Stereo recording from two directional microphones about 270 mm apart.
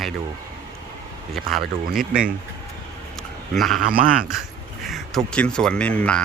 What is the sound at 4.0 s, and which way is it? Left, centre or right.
Speech, right.